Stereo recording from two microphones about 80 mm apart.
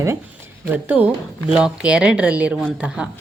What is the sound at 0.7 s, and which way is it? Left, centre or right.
Speech, right.